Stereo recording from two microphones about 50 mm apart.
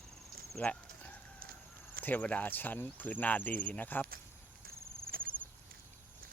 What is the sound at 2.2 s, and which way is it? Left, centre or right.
Speech, left.